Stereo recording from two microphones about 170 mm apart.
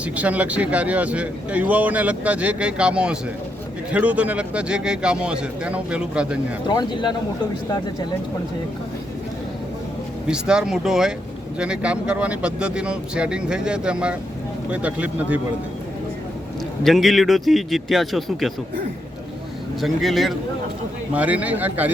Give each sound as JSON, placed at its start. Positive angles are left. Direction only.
{"t": 0.0, "sound": "speech", "side_deg": -10}
{"t": 6.7, "sound": "speech", "side_deg": 25}
{"t": 10.2, "sound": "speech", "side_deg": -5}
{"t": 16.8, "sound": "speech", "side_deg": 0}
{"t": 19.8, "sound": "speech", "side_deg": 0}